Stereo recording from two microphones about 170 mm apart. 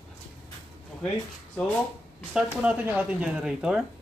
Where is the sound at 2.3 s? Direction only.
5° right (ahead or behind).